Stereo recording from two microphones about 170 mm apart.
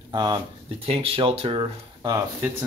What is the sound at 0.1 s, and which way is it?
Speech, 25° right (ahead or behind).